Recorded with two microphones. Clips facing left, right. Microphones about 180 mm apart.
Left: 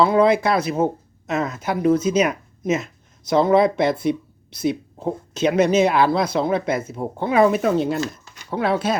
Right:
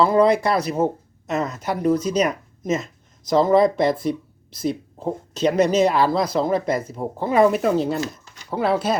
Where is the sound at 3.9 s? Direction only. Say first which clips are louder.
Left 2 dB; 40° right (ahead or behind).